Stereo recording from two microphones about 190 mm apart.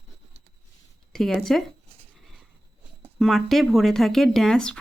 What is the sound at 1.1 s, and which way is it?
Speech, centre (ahead or behind).